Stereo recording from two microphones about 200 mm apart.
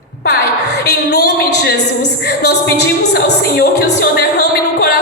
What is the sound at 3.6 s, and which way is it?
Music, 55° left (ahead or behind).